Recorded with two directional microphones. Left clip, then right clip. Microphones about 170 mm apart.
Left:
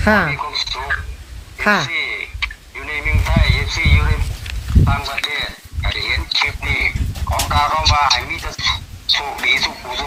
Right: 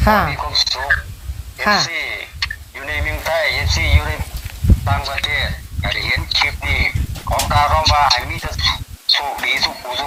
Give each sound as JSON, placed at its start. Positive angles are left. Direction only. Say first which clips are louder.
{"t": 0.0, "sound": "speech", "louder": "even", "side_deg": 15}
{"t": 0.3, "sound": "frog", "louder": "right 4 dB", "side_deg": -80}
{"t": 1.8, "sound": "a sound", "louder": "even", "side_deg": -80}